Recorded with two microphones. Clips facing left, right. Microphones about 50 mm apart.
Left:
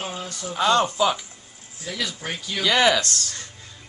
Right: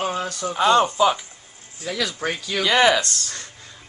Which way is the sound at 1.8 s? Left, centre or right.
Right.